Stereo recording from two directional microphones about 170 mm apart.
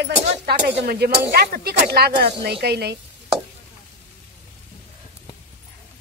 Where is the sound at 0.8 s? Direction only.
70° right (ahead or behind).